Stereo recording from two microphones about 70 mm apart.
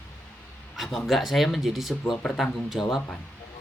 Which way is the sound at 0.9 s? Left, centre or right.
Centre.